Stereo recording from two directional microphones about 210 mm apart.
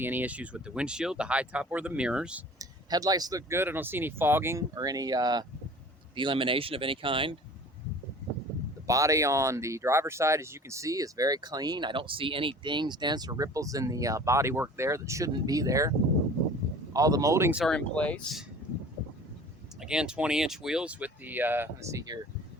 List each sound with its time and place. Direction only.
0.0 s speech: 10° right (ahead or behind)
2.6 s speech: 15° right (ahead or behind)
8.9 s speech: 15° right (ahead or behind)
16.9 s speech: 15° right (ahead or behind)
17.6 s speech: 5° left (ahead or behind)
19.8 s speech: 5° right (ahead or behind)